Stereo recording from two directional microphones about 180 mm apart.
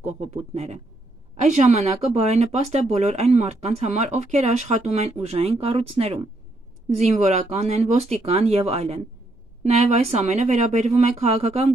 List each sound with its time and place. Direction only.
0.0 s speech: 35° right (ahead or behind)